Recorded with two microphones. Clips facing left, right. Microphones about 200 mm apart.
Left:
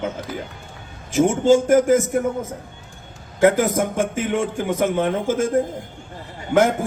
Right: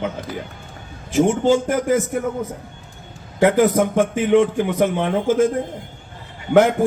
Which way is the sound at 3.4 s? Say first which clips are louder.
Right 1 dB; 45° left (ahead or behind).